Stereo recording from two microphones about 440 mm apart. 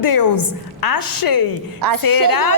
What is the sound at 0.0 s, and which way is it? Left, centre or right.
A woman's voice, left.